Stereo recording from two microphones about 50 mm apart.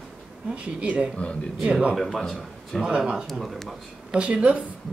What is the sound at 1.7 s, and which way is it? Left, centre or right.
Speech, right.